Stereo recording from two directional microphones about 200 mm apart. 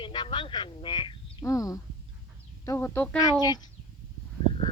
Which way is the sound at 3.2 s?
20° left (ahead or behind).